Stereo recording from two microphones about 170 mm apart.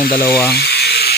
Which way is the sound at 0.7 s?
70° left (ahead or behind).